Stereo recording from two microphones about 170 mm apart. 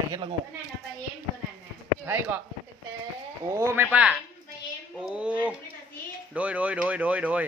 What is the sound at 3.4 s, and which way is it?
Speech, 15° right (ahead or behind).